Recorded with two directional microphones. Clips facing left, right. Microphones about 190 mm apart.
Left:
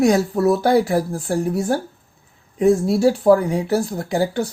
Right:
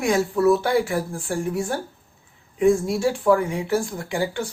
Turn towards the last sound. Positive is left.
turn(degrees=40)  # may be behind; listen again after turning